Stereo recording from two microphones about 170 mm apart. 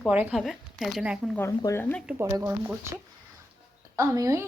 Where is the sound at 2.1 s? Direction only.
15° right (ahead or behind).